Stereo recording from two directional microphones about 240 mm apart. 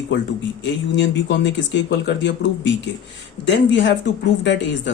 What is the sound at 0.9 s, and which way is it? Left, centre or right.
Speech, left.